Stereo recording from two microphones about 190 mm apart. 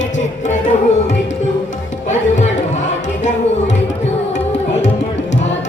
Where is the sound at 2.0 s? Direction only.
35° left (ahead or behind).